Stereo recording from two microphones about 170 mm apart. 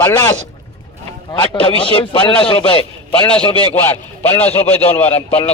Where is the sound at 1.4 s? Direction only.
30° left (ahead or behind).